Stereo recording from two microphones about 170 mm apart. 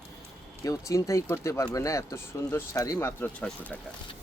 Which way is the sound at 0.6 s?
20° left (ahead or behind).